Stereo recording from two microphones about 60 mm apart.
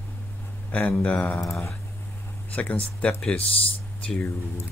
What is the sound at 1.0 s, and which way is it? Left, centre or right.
Speech, left.